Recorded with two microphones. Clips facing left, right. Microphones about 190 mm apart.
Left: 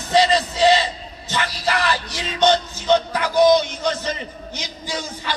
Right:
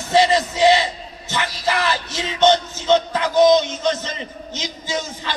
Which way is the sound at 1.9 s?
15° left (ahead or behind).